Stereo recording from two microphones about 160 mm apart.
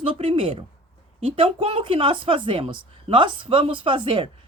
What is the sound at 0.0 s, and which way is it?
Speech, 35° right (ahead or behind).